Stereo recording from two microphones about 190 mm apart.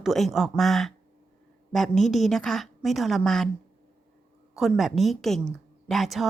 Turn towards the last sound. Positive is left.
turn(degrees=0)  # may be behind; listen again after turning